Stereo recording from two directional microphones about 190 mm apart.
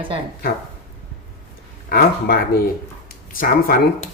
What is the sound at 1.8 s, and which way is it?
Speech, 50° left (ahead or behind).